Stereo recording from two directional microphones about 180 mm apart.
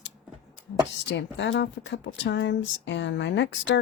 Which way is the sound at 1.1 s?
80° left.